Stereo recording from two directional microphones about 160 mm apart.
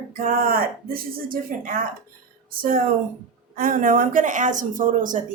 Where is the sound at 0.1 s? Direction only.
65° right (ahead or behind).